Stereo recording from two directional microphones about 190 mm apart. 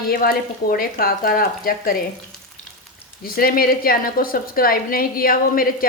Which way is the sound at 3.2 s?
50° left (ahead or behind).